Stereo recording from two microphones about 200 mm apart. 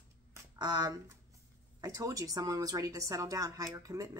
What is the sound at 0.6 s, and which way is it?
Speech, 20° right (ahead or behind).